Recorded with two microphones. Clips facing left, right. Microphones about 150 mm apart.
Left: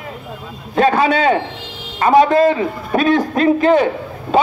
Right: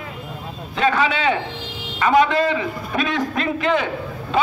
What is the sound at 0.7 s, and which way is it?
A man's voice, 40° left (ahead or behind).